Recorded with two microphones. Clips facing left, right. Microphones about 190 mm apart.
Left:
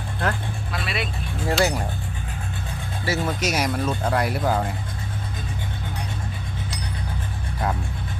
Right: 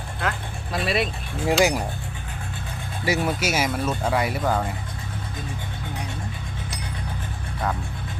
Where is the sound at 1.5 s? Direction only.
10° right (ahead or behind).